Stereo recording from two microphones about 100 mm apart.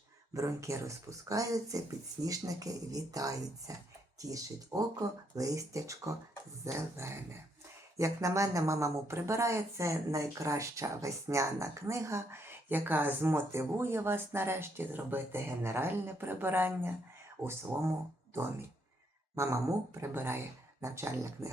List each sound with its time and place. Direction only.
0.3 s speech: 30° right (ahead or behind)
19.4 s speech: 30° right (ahead or behind)